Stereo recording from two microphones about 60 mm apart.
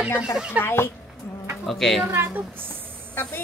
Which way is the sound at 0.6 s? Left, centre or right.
Left.